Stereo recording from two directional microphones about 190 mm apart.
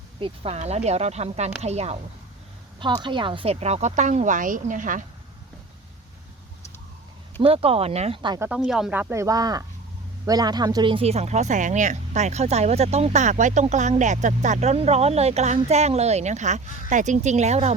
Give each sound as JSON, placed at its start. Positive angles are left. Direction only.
{"t": 0.2, "sound": "speech", "side_deg": -35}
{"t": 2.8, "sound": "speech", "side_deg": -25}
{"t": 7.3, "sound": "speech", "side_deg": -30}
{"t": 8.4, "sound": "speech", "side_deg": -5}